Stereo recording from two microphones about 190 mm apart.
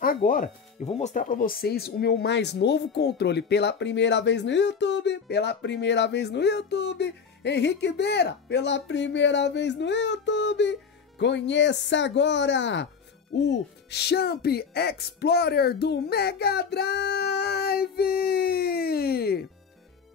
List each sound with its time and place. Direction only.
0.0 s speech: 45° left (ahead or behind)
0.8 s speech: 35° left (ahead or behind); by 19.4 s 55° left (ahead or behind)